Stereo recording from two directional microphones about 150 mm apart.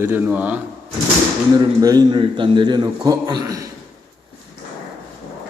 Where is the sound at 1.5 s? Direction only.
25° right (ahead or behind).